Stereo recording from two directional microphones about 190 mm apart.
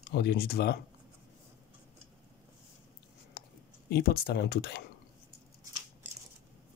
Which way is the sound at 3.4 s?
55° left (ahead or behind).